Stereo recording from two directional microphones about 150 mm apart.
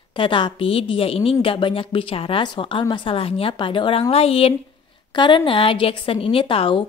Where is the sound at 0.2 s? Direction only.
35° left (ahead or behind).